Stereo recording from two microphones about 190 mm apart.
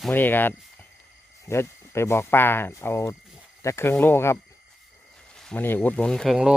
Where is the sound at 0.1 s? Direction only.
10° left (ahead or behind).